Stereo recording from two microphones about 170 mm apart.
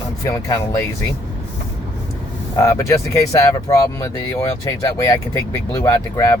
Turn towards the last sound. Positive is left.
turn(degrees=20)  # may be behind; listen again after turning